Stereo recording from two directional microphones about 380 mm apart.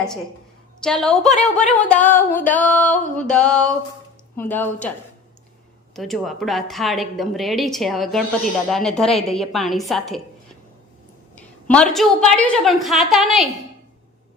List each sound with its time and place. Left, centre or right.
0.8 s a woman's voice: centre
1.3 s a woman's voice: centre
1.7 s a woman's voice: centre
6.0 s a woman's voice: centre
11.3 s a woman's voice: centre